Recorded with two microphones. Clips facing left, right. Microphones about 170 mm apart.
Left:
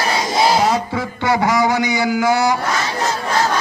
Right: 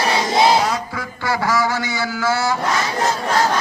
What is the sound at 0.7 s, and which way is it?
A man's voice, 25° left (ahead or behind).